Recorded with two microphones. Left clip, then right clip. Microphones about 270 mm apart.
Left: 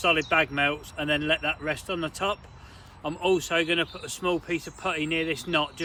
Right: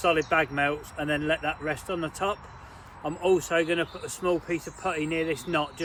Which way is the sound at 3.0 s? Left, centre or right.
Centre.